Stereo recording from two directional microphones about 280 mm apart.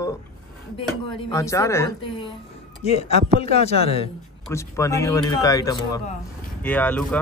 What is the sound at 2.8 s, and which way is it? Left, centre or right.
Speech, left.